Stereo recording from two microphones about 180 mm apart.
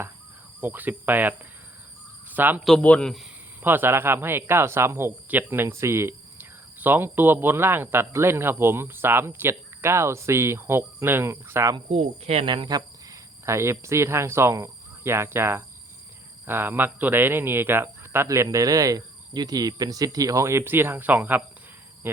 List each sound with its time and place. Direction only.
0.6 s speech: 10° right (ahead or behind)
2.6 s a man's voice: 5° left (ahead or behind)
3.6 s speech: 10° right (ahead or behind)
11.9 s speech: 35° right (ahead or behind); by 21.4 s 10° right (ahead or behind)
22.0 s cricket: 10° right (ahead or behind)